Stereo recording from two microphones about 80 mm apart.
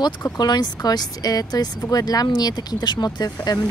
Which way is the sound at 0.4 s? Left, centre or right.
Left.